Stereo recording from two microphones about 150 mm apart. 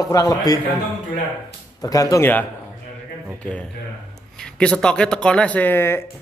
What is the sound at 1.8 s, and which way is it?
Speech, 25° left (ahead or behind).